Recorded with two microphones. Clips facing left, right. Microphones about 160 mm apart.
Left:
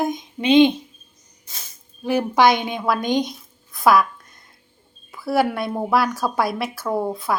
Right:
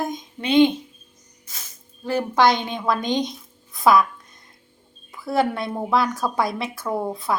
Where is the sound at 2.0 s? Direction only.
15° left (ahead or behind).